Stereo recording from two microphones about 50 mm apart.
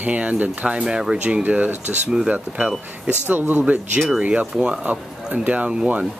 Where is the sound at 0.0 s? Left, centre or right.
Right.